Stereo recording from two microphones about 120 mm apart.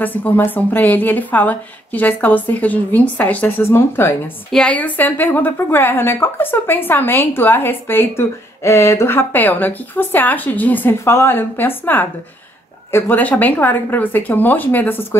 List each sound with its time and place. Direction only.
0.0 s a woman's voice: 15° left (ahead or behind)
4.5 s a woman's voice: 5° left (ahead or behind)